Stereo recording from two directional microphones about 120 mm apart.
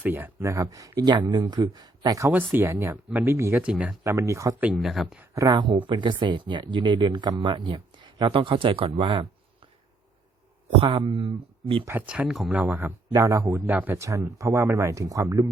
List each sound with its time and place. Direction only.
0.0 s speech: 15° right (ahead or behind)
2.3 s speech: 15° right (ahead or behind)
3.6 s speech: 5° right (ahead or behind)
4.0 s speech: 25° right (ahead or behind)
4.8 s speech: centre (ahead or behind)
5.5 s speech: 40° right (ahead or behind)
10.8 s speech: 45° right (ahead or behind)
11.9 s speech: 10° right (ahead or behind)
13.1 s speech: 25° right (ahead or behind)